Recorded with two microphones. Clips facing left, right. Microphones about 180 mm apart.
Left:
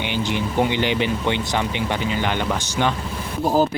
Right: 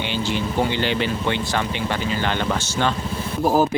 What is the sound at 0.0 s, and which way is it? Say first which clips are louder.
Speech: even; 15° left (ahead or behind).